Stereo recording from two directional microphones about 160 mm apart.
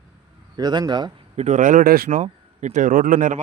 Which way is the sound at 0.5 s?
25° right (ahead or behind).